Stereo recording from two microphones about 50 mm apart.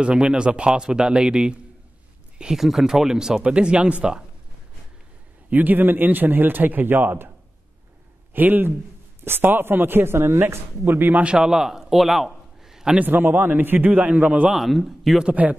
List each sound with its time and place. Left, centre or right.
0.0 s a man's voice: right
2.3 s a sound: centre
2.6 s a man's voice: centre; by 4.2 s right
5.5 s speech: right
8.3 s a man's voice: right
11.4 s a sound: centre
12.9 s speech: right
14.1 s speech: right
14.5 s a man's voice: centre
15.4 s speech: right